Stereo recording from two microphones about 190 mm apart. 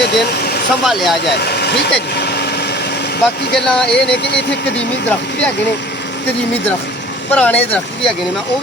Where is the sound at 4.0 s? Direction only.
65° left (ahead or behind).